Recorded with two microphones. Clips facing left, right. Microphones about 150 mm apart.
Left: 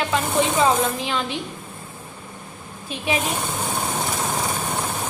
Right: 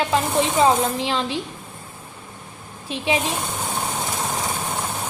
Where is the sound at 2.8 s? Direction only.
30° right (ahead or behind).